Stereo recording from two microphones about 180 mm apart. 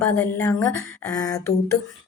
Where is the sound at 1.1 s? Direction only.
20° left (ahead or behind).